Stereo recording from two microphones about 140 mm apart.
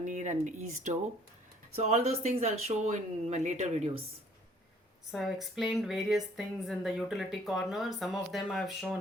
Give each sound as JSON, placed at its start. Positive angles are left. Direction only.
{"t": 0.0, "sound": "speech", "side_deg": -60}
{"t": 5.1, "sound": "a woman's voice", "side_deg": 0}